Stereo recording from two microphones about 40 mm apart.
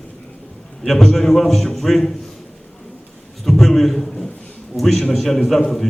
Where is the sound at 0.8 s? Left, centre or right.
Centre.